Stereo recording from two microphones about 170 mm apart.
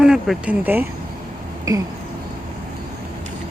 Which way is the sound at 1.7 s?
20° right (ahead or behind).